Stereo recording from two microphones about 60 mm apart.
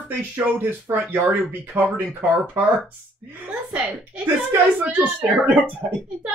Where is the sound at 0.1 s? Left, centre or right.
Right.